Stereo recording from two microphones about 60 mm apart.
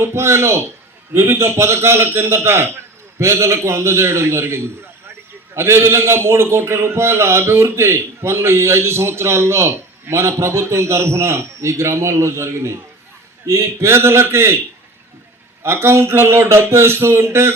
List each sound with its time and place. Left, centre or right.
0.0 s a man's voice: right
15.6 s a man's voice: right